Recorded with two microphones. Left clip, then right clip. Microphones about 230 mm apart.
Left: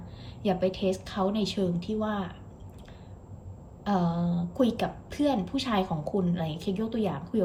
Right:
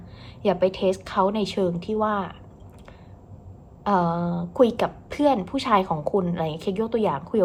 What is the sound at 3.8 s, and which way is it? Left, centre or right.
A woman's voice, centre.